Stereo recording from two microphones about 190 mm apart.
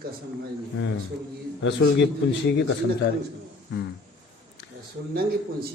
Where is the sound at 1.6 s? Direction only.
80° left.